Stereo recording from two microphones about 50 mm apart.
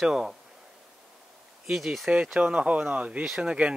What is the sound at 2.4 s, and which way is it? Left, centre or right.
Speech, right.